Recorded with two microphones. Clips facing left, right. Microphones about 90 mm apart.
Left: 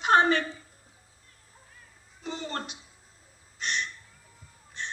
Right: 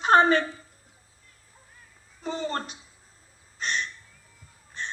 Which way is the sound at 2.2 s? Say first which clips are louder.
Right 5 dB; 40° right (ahead or behind).